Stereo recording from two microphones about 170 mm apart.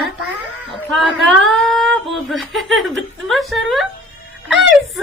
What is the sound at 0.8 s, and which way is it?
Speech, centre (ahead or behind).